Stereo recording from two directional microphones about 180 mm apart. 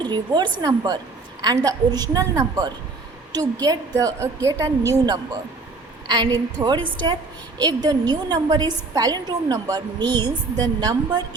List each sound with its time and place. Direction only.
0.0 s a woman's voice: 25° right (ahead or behind)
6.6 s a woman's voice: 25° right (ahead or behind)